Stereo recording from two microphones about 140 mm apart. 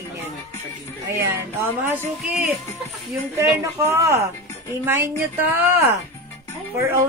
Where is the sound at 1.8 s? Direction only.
15° right (ahead or behind).